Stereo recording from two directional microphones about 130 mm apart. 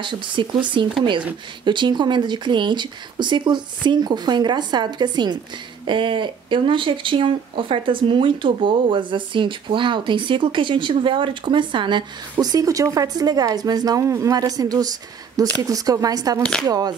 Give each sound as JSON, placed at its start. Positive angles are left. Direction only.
{"t": 0.0, "sound": "speech", "side_deg": -35}